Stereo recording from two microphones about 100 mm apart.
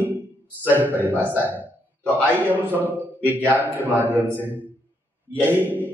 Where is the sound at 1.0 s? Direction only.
20° right (ahead or behind).